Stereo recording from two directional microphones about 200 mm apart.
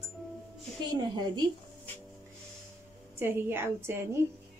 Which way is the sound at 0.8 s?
20° right (ahead or behind).